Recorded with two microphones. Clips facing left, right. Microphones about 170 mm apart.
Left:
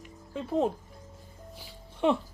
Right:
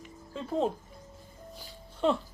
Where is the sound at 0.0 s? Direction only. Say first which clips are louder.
Left 2 dB; 5° left (ahead or behind).